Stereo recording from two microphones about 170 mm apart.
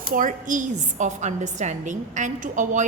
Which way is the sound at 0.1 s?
50° right (ahead or behind).